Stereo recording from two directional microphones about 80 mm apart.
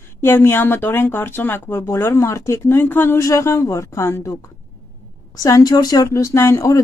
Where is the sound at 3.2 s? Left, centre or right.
Left.